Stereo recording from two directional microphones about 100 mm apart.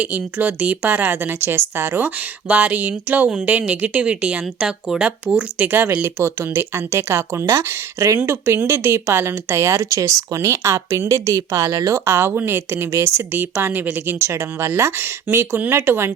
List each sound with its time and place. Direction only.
0.0 s speech: 15° right (ahead or behind)